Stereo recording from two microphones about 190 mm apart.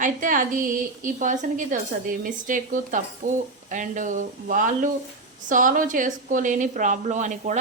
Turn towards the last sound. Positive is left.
turn(degrees=-40)  # may be behind; listen again after turning